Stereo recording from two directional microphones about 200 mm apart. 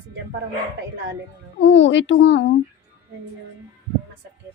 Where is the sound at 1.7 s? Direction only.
65° left (ahead or behind).